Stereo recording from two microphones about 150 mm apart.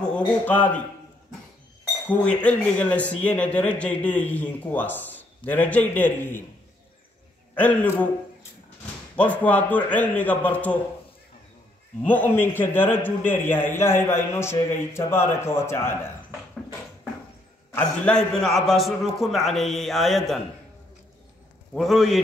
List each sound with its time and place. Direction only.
0.0 s a man's voice: 10° left (ahead or behind)
2.0 s speech: 10° left (ahead or behind)
7.5 s speech: 10° left (ahead or behind)
9.1 s speech: 10° left (ahead or behind)
12.0 s speech: 10° left (ahead or behind)
17.7 s a man's voice: 5° left (ahead or behind)
21.7 s a man's voice: centre (ahead or behind)